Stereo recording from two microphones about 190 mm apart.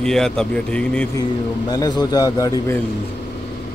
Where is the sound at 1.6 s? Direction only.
20° left (ahead or behind).